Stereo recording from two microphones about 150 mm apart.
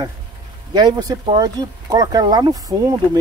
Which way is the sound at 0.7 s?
25° right (ahead or behind).